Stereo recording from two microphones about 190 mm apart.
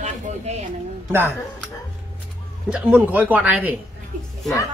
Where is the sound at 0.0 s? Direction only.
35° right (ahead or behind).